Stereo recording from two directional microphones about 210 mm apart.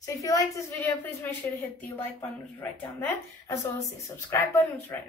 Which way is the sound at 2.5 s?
10° left (ahead or behind).